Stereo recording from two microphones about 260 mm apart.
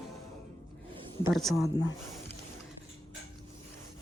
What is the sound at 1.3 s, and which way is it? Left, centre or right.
Speech, centre.